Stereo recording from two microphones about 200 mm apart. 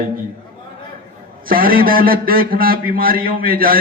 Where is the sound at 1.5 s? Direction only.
45° right (ahead or behind).